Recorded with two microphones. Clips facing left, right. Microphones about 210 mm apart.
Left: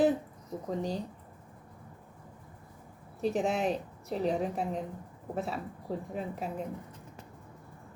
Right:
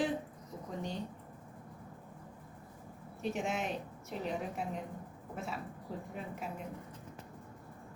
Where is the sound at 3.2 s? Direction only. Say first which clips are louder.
Left 7 dB; 35° left (ahead or behind).